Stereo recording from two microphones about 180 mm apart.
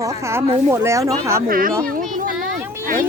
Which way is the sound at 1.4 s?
50° right (ahead or behind).